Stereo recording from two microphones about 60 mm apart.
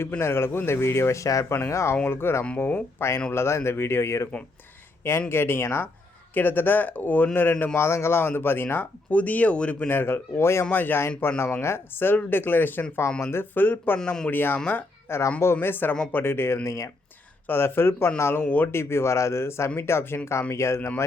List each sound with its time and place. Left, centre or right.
0.2 s speech: left
1.6 s speech: left
5.3 s speech: left
6.3 s speech: left
7.9 s speech: left; by 9.9 s centre
9.9 s speech: left
10.7 s speech: left
13.0 s speech: left
14.0 s speech: centre
14.3 s speech: left
16.6 s speech: left
17.4 s speech: left
18.7 s speech: left